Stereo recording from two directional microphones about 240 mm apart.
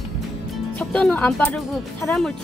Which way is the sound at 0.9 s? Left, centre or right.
Centre.